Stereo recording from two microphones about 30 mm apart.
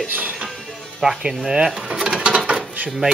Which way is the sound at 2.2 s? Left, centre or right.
Right.